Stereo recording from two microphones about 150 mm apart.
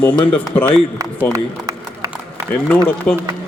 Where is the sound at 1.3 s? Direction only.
25° right (ahead or behind).